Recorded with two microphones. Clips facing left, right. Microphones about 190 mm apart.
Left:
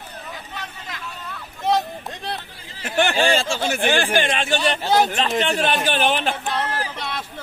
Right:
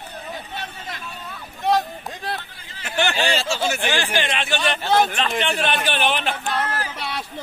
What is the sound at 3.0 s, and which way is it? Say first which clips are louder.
Speech: left 3 dB; 50° left (ahead or behind).